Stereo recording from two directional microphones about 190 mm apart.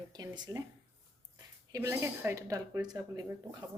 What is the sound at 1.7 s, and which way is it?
Speech, 15° right (ahead or behind).